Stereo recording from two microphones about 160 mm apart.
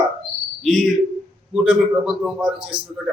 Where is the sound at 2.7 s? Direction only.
30° right (ahead or behind).